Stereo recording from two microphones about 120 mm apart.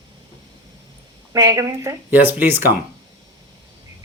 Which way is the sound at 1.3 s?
30° right (ahead or behind).